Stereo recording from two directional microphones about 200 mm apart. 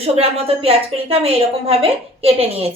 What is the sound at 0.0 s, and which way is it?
A woman's voice, 30° right (ahead or behind).